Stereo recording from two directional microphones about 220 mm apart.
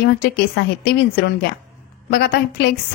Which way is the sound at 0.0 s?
45° left (ahead or behind).